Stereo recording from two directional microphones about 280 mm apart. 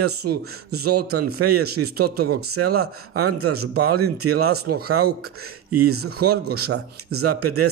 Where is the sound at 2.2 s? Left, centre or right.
Right.